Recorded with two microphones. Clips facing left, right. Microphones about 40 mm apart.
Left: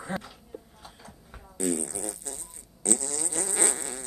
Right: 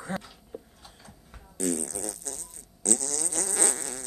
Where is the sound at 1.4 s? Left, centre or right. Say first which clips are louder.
Left 1 dB; left.